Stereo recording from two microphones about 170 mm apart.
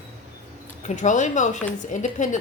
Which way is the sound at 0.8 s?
45° left (ahead or behind).